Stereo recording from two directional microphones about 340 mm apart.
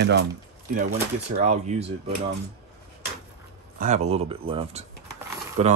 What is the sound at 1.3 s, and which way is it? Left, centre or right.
Speech, centre.